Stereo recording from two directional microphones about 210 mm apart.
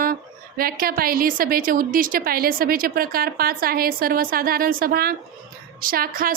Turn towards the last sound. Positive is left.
turn(degrees=-40)  # may be behind; listen again after turning